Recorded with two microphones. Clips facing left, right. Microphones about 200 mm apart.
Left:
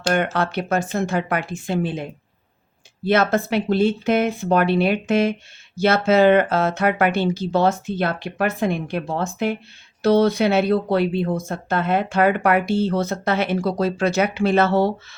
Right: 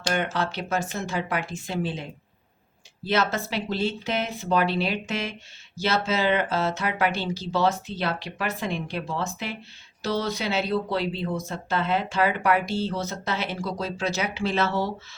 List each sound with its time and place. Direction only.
0.1 s speech: 55° left (ahead or behind)